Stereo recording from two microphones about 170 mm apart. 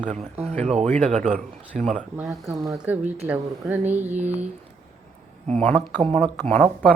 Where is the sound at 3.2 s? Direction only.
10° right (ahead or behind).